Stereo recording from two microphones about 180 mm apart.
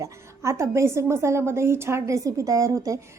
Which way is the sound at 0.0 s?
15° right (ahead or behind).